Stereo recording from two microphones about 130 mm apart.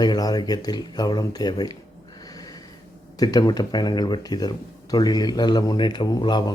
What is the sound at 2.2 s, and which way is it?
Snort, 30° left (ahead or behind).